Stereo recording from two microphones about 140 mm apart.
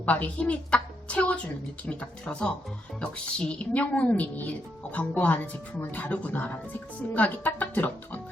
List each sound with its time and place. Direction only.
0.0 s a woman's voice: 10° left (ahead or behind)